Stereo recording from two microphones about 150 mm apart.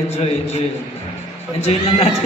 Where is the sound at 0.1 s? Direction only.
45° left (ahead or behind).